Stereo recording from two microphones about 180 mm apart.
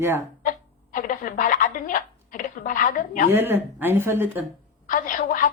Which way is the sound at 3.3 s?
10° right (ahead or behind).